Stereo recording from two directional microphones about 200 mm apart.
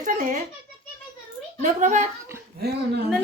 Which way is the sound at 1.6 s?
40° right (ahead or behind).